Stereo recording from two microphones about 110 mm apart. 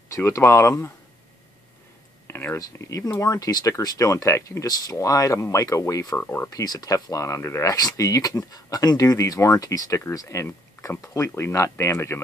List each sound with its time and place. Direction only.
0.1 s speech: 25° left (ahead or behind)
2.2 s a sound: 25° left (ahead or behind)
2.6 s speech: 30° left (ahead or behind)
6.1 s speech: 20° left (ahead or behind)
6.5 s speech: 35° left (ahead or behind)